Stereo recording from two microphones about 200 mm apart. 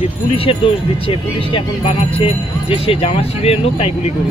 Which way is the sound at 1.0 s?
25° left (ahead or behind).